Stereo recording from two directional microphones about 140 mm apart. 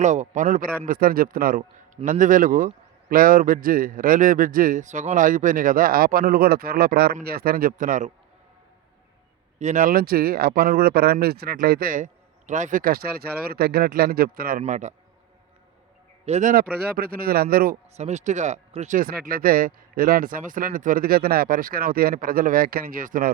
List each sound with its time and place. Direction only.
0.0 s speech: 60° right (ahead or behind); by 1.6 s 90° right
2.0 s speech: 70° right (ahead or behind)
3.1 s speech: 90° right; by 8.1 s 70° right (ahead or behind)
9.6 s speech: 60° right (ahead or behind); by 14.6 s 90° right
14.6 s speech: 55° right (ahead or behind)
16.2 s a man's voice: 50° right (ahead or behind)
16.5 s speech: 90° right
17.9 s speech: 55° right (ahead or behind)
18.9 s speech: 85° right